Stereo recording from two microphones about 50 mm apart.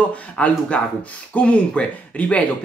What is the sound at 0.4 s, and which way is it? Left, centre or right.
Speech, left.